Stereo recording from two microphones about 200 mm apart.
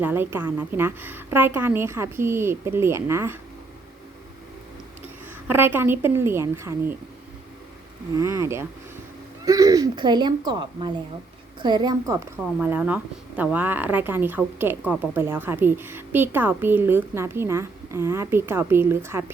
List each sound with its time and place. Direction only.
0.0 s a woman's voice: 10° right (ahead or behind)
5.5 s a woman's voice: 10° right (ahead or behind)
8.1 s a woman's voice: 15° right (ahead or behind)